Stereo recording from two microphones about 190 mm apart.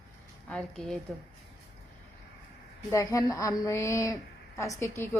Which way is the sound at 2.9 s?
15° left (ahead or behind).